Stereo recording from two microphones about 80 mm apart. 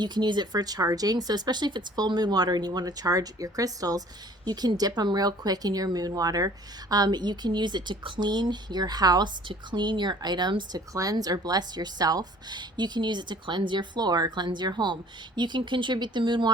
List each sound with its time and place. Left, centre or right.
0.0 s a woman's voice: right
6.9 s a woman's voice: right
10.9 s a woman's voice: right